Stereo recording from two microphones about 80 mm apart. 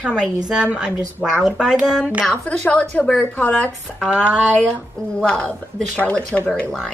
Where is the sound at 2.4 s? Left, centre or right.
Centre.